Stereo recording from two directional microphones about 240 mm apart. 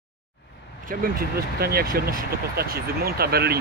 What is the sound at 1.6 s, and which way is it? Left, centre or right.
Speech, right.